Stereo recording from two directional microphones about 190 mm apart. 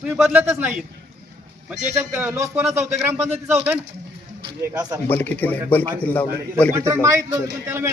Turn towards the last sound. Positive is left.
turn(degrees=-10)  # may be behind; listen again after turning